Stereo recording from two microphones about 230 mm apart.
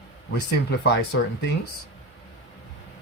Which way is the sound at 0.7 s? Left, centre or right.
Left.